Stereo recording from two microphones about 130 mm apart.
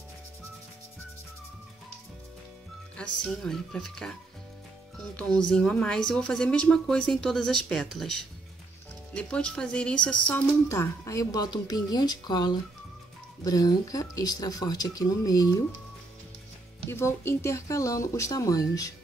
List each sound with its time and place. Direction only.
3.0 s a woman's voice: 5° left (ahead or behind); by 15.6 s 25° left (ahead or behind)
16.9 s a woman's voice: 20° left (ahead or behind)